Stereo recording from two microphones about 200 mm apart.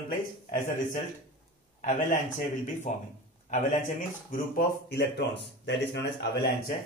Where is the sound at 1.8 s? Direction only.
40° left (ahead or behind); by 6.5 s 55° left (ahead or behind).